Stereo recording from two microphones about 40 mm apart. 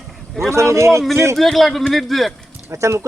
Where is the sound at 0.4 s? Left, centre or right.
Left.